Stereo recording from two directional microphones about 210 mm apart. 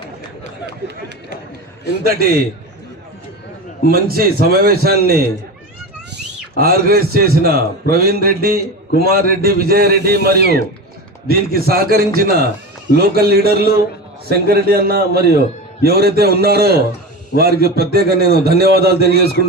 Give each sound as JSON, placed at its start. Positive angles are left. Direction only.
{"t": 3.8, "sound": "a man's voice", "side_deg": -45}
{"t": 6.6, "sound": "a man's voice", "side_deg": -45}